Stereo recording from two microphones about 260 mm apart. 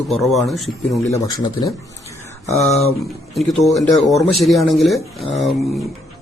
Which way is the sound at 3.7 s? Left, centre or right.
Centre.